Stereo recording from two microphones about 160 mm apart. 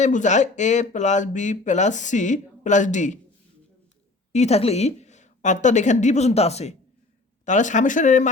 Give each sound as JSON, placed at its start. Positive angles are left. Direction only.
{"t": 0.0, "sound": "speech", "side_deg": 50}
{"t": 4.3, "sound": "a woman's voice", "side_deg": 45}